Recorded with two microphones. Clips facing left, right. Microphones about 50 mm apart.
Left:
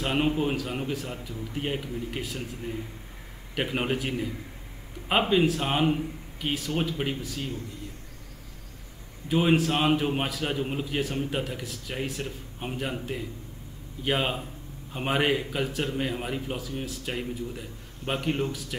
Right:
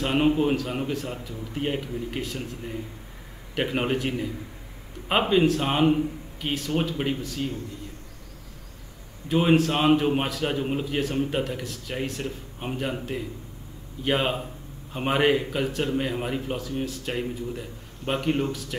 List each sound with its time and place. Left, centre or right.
0.0 s a man's voice: centre
5.3 s a man's voice: centre
9.3 s a man's voice: centre